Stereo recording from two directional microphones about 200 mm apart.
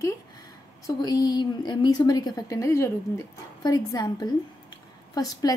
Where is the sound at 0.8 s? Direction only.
20° left (ahead or behind).